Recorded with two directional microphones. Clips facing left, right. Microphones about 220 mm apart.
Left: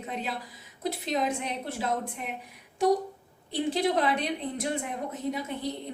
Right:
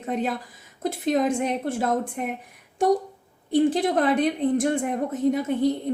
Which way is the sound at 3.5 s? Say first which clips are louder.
Right 6 dB; 50° right (ahead or behind).